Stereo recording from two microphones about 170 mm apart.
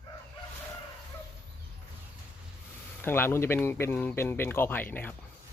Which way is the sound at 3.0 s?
10° left (ahead or behind).